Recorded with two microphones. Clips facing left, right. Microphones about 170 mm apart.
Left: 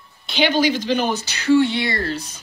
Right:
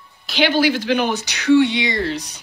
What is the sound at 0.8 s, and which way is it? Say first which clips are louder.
Speech: right 1 dB; 60° right (ahead or behind).